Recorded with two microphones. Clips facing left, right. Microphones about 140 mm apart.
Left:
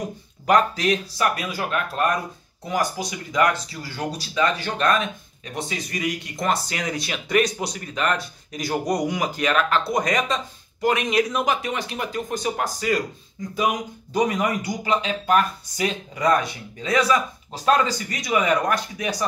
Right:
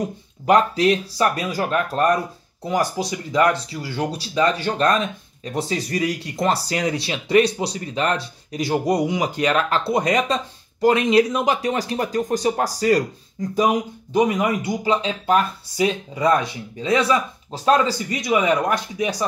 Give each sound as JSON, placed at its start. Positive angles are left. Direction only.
{"t": 0.5, "sound": "speech", "side_deg": -30}
{"t": 14.1, "sound": "speech", "side_deg": -20}